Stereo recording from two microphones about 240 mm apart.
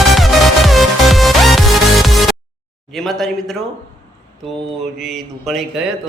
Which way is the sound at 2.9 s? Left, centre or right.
Centre.